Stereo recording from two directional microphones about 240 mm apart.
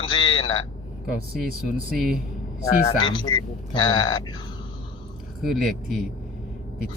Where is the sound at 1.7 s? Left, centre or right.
Right.